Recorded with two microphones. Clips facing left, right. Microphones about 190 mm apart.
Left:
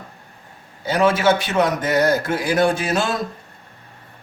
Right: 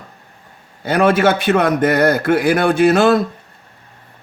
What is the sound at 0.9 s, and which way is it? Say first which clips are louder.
A man's voice: right 3 dB; 60° right (ahead or behind).